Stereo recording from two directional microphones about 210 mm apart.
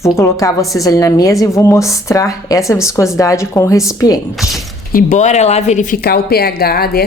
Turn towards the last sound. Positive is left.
turn(degrees=45)  # may be behind; listen again after turning